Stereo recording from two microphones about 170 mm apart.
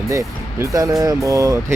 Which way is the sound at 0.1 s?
20° right (ahead or behind).